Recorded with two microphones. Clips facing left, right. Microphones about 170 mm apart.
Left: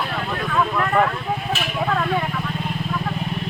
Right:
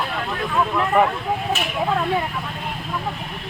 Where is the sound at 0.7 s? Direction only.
15° right (ahead or behind).